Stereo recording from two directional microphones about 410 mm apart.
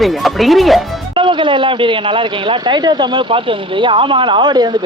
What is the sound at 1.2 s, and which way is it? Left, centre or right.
A man's voice, centre.